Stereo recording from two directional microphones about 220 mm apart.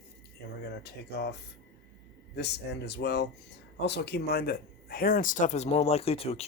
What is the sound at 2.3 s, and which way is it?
Speech, 50° left (ahead or behind).